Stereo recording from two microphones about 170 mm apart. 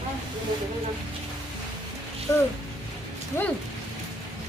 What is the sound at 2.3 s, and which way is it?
Speech, 20° left (ahead or behind).